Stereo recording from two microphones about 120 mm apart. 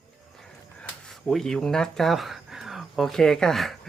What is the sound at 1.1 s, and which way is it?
Speech, 5° left (ahead or behind).